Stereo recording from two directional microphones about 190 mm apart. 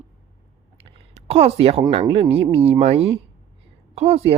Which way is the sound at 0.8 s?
30° right (ahead or behind).